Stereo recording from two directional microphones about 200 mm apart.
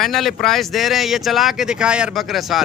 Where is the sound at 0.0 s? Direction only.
Centre (ahead or behind).